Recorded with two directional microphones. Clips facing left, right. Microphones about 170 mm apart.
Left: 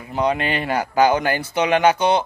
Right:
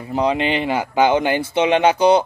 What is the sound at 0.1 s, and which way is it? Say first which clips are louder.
A man's voice: right 2 dB; 30° right (ahead or behind).